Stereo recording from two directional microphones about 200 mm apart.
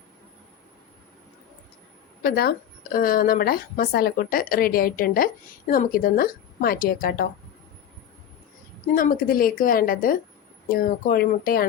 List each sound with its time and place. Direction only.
2.2 s speech: 50° left (ahead or behind)
9.0 s speech: 45° left (ahead or behind)